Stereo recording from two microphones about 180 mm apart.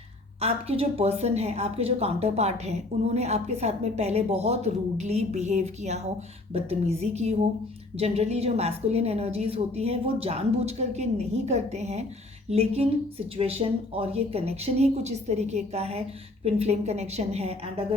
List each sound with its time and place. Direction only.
0.3 s a woman's voice: 35° right (ahead or behind)